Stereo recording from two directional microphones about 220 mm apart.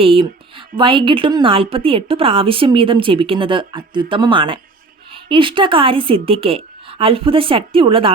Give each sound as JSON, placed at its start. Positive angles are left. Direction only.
{"t": 0.0, "sound": "a woman's voice", "side_deg": -25}